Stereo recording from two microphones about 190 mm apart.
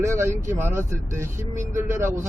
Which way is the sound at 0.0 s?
15° right (ahead or behind).